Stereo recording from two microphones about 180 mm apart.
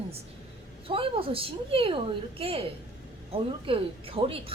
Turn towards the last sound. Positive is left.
turn(degrees=-30)  # may be behind; listen again after turning